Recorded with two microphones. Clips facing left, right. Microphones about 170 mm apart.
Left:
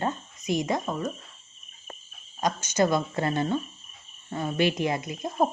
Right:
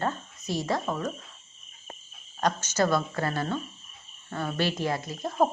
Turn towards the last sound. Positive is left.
turn(degrees=15)  # may be behind; listen again after turning